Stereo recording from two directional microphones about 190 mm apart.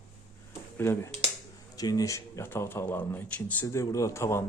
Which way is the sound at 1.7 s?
20° left (ahead or behind).